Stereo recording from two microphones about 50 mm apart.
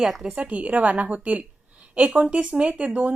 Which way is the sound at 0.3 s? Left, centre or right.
Right.